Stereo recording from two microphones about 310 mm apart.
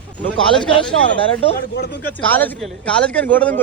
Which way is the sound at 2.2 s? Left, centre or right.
Centre.